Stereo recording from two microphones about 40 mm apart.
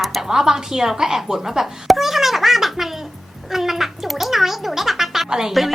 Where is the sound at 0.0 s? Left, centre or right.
Centre.